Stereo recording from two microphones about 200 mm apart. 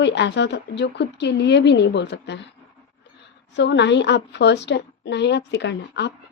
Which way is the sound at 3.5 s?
60° left (ahead or behind).